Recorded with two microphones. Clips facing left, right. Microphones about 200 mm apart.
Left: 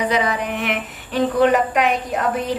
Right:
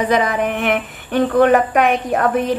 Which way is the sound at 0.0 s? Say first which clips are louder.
Right 4 dB; 50° right (ahead or behind).